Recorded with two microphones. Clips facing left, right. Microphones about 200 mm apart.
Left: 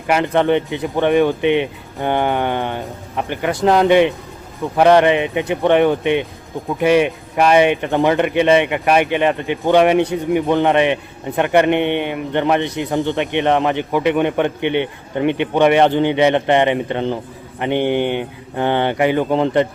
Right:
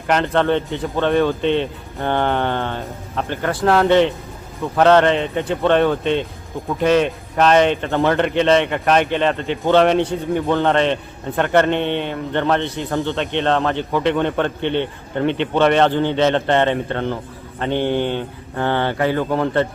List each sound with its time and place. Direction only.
0.1 s speech: 15° left (ahead or behind)